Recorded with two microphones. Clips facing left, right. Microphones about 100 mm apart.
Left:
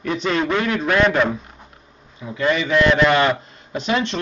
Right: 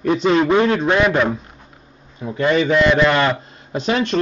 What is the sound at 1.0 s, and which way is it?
Speech, 5° right (ahead or behind).